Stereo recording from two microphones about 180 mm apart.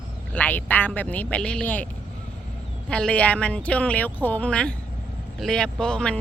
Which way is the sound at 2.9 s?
5° left (ahead or behind).